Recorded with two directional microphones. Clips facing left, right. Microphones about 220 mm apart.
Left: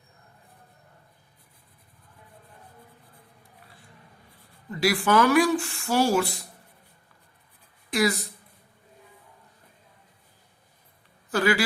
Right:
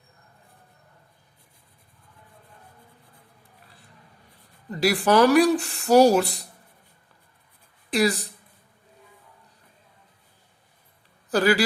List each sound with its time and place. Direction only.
4.7 s speech: 35° right (ahead or behind)
7.9 s speech: 35° right (ahead or behind)
11.3 s a man's voice: 35° right (ahead or behind)